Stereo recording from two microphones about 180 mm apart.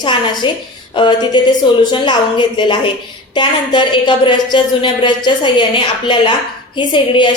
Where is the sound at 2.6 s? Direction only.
25° left (ahead or behind).